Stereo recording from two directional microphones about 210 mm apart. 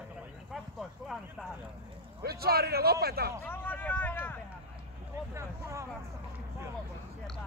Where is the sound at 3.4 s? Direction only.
10° left (ahead or behind).